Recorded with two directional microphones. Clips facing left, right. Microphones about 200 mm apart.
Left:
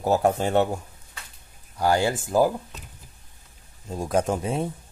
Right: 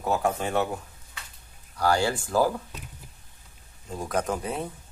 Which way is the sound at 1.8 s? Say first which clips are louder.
Left 2 dB; 20° left (ahead or behind).